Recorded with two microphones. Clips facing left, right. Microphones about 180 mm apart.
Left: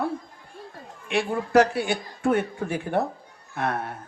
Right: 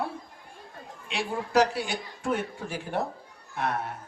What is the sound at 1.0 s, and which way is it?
A man's voice, 55° left (ahead or behind).